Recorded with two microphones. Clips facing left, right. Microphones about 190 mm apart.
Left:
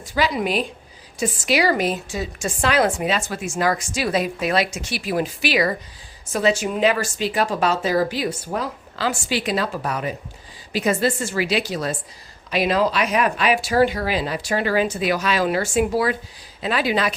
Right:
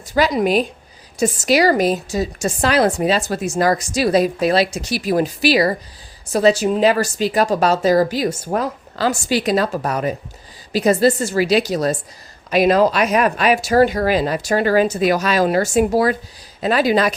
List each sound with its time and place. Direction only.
0.0 s a woman's voice: 40° right (ahead or behind)